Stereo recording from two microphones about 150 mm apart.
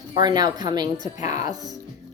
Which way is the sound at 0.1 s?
30° right (ahead or behind).